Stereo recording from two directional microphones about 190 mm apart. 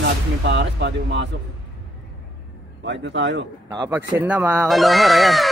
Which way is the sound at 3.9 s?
10° right (ahead or behind).